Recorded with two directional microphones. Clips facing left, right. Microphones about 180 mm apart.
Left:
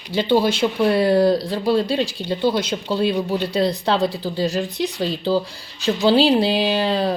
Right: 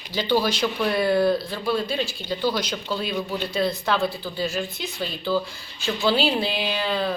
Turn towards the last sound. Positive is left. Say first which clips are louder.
# left 6 dB
turn(degrees=35)  # may be behind; listen again after turning